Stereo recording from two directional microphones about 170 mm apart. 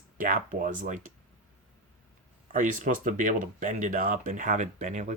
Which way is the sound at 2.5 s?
50° right (ahead or behind).